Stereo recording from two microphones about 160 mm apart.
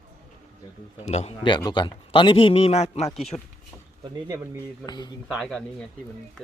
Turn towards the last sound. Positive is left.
turn(degrees=5)  # may be behind; listen again after turning